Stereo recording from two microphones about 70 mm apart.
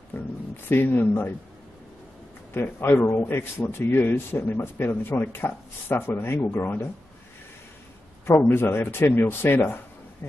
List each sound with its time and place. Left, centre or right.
0.1 s a sound: left
0.7 s speech: left
2.5 s a man's voice: left
8.3 s a man's voice: left